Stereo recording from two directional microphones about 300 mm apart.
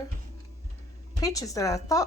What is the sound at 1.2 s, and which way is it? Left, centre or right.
Speech, centre.